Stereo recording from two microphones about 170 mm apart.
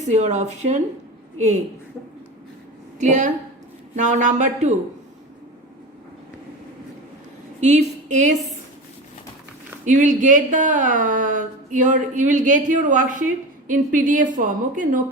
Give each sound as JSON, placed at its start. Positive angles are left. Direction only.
{"t": 0.1, "sound": "speech", "side_deg": -45}
{"t": 3.0, "sound": "speech", "side_deg": -45}
{"t": 7.6, "sound": "speech", "side_deg": -45}
{"t": 9.8, "sound": "speech", "side_deg": -50}